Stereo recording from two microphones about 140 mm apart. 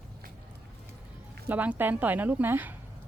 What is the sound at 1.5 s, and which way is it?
Speech, 15° right (ahead or behind).